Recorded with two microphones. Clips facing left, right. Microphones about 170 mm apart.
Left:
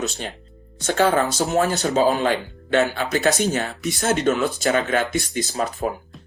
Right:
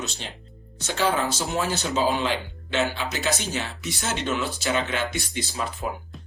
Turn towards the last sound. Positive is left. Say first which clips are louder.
# left 6 dB
turn(degrees=45)  # may be behind; listen again after turning